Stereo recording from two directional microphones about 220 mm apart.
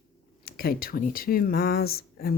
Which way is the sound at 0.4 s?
40° left (ahead or behind).